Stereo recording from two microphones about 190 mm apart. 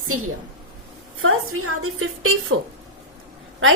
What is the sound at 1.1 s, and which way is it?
A woman's voice, 90° right.